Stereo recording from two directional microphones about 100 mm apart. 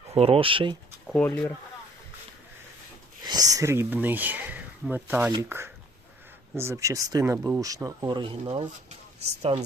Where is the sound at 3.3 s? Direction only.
40° right (ahead or behind).